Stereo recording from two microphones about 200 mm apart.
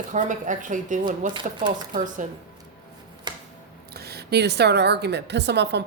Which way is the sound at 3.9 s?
50° right (ahead or behind).